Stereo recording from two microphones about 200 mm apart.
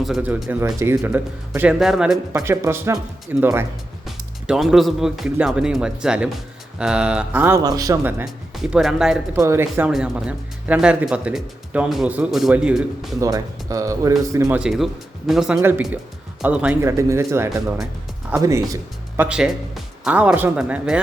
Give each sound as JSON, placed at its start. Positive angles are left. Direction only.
{"t": 0.0, "sound": "speech", "side_deg": -5}
{"t": 2.3, "sound": "speech", "side_deg": -10}
{"t": 4.0, "sound": "speech", "side_deg": 0}
{"t": 8.2, "sound": "speech", "side_deg": -5}
{"t": 13.1, "sound": "speech", "side_deg": -15}